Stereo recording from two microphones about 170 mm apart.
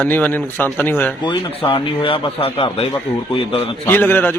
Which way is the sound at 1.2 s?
30° left (ahead or behind).